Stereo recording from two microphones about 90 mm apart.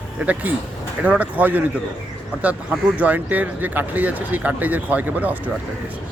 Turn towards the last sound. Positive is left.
turn(degrees=-15)  # may be behind; listen again after turning